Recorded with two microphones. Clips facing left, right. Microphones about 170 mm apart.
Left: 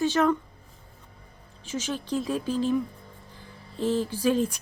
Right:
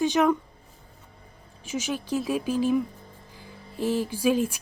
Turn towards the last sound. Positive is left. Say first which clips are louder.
# right 1 dB
turn(degrees=-5)  # may be behind; listen again after turning